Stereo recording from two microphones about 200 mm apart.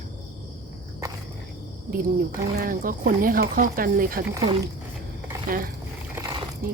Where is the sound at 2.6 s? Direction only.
45° right (ahead or behind).